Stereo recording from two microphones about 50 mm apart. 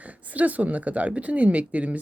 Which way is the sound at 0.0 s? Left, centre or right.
Right.